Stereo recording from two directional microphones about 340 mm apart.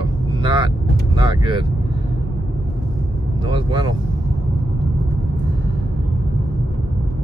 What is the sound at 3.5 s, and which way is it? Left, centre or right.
Speech, centre.